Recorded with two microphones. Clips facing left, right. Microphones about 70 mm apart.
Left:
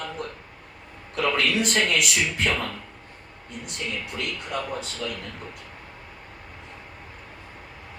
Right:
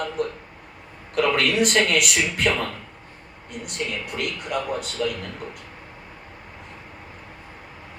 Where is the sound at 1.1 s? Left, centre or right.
Right.